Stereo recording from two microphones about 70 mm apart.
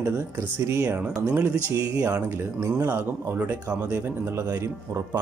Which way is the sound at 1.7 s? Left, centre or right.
Right.